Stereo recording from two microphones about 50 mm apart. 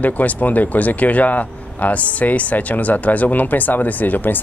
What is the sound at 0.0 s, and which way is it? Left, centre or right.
Speech, left.